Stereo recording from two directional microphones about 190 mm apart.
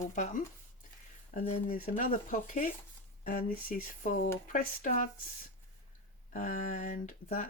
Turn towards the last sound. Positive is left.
turn(degrees=40)  # may be behind; listen again after turning